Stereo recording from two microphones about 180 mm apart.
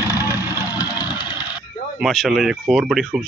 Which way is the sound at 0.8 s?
25° left (ahead or behind).